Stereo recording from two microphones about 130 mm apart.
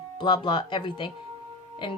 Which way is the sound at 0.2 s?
35° left (ahead or behind).